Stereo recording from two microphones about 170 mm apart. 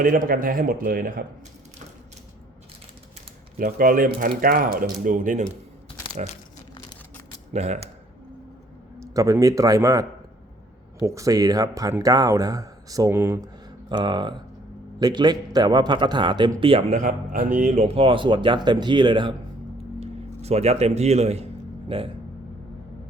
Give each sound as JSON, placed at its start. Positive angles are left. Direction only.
{"t": 0.0, "sound": "speech", "side_deg": -50}
{"t": 3.6, "sound": "speech", "side_deg": -55}
{"t": 7.5, "sound": "speech", "side_deg": -40}
{"t": 9.0, "sound": "speech", "side_deg": -20}
{"t": 13.9, "sound": "speech", "side_deg": -25}
{"t": 17.0, "sound": "speech", "side_deg": -55}
{"t": 20.0, "sound": "speech", "side_deg": -40}